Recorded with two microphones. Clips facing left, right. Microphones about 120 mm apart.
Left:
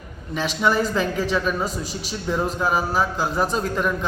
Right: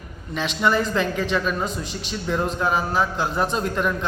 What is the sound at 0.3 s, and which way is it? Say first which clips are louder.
A man's voice: even; 5° left (ahead or behind).